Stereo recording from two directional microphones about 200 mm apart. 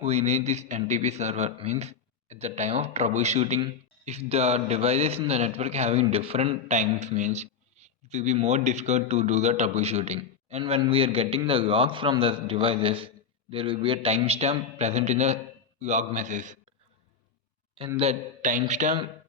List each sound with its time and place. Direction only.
0.0 s a man's voice: 35° right (ahead or behind)
17.7 s a man's voice: 25° right (ahead or behind)